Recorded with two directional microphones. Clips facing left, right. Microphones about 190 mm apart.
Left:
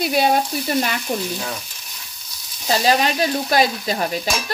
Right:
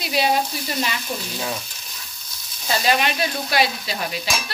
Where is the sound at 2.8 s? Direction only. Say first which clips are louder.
Left 3 dB; 35° left (ahead or behind).